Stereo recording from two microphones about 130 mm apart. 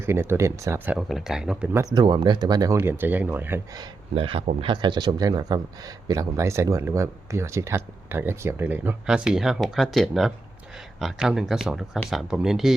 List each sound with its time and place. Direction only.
0.0 s a man's voice: 20° right (ahead or behind)
0.9 s speech: centre (ahead or behind)
1.7 s speech: 30° right (ahead or behind)
2.7 s speech: 15° right (ahead or behind)
4.1 s a man's voice: 45° right (ahead or behind); by 12.7 s 5° right (ahead or behind)